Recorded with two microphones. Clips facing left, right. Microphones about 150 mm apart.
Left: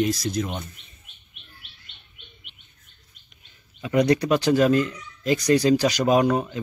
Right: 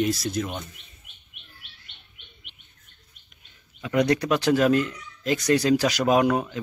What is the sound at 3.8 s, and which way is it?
Speech, 5° left (ahead or behind).